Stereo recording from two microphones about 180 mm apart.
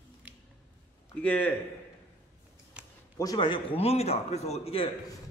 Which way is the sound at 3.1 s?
25° left (ahead or behind).